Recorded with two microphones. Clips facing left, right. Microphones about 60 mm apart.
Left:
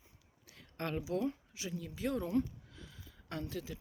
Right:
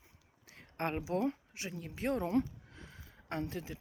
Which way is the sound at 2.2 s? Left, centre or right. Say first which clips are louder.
Right 2 dB; right.